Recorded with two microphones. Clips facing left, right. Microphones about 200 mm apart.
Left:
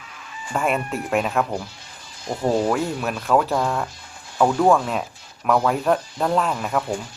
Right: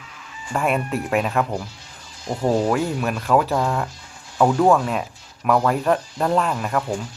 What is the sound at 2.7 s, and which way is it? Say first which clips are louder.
Speech: right 2 dB; centre (ahead or behind).